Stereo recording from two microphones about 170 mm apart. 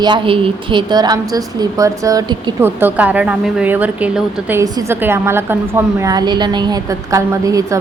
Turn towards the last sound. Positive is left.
turn(degrees=-20)  # may be behind; listen again after turning